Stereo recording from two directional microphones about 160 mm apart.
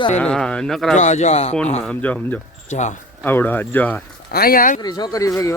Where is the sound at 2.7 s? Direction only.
50° left (ahead or behind).